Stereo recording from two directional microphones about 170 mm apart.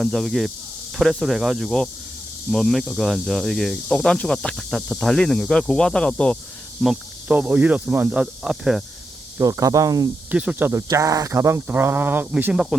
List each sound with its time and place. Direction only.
0.0 s speech: centre (ahead or behind)
9.4 s speech: 20° right (ahead or behind)
10.3 s speech: 10° right (ahead or behind)